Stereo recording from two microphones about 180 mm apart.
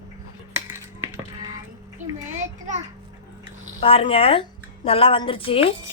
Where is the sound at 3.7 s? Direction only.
30° left (ahead or behind).